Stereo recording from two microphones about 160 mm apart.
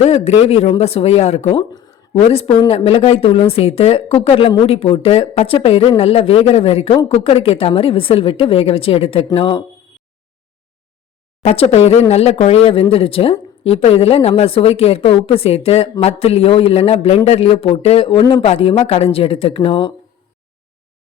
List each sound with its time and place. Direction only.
0.0 s speech: 40° left (ahead or behind)
11.4 s speech: 40° left (ahead or behind)